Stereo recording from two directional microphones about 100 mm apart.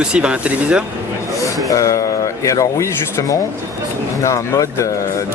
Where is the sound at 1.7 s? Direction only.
35° left (ahead or behind).